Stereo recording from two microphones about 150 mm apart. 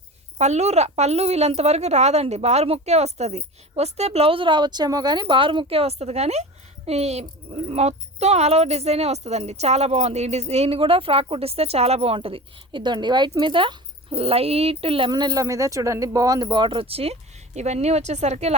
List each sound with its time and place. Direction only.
0.3 s a woman's voice: 50° right (ahead or behind)